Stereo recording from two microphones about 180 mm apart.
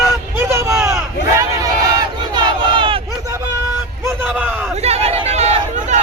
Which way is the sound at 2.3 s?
25° right (ahead or behind).